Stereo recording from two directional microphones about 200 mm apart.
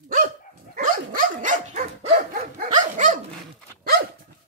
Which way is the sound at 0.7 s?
40° right (ahead or behind).